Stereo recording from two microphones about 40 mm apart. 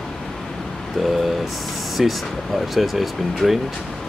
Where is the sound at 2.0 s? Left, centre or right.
Centre.